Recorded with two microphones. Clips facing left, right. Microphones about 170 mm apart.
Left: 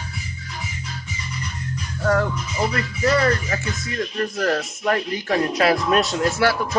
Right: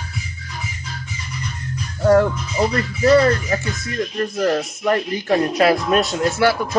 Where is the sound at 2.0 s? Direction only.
35° right (ahead or behind).